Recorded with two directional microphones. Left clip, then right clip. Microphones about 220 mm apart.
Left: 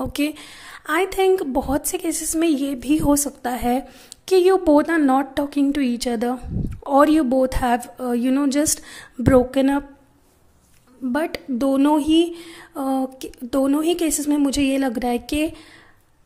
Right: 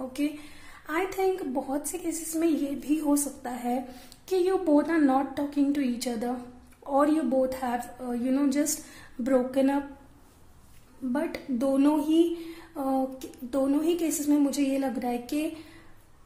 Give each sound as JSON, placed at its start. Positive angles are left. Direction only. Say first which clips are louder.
{"t": 0.8, "sound": "a woman's voice", "louder": "left 9 dB", "side_deg": 35}
{"t": 11.1, "sound": "a woman's voice", "louder": "left 7 dB", "side_deg": 35}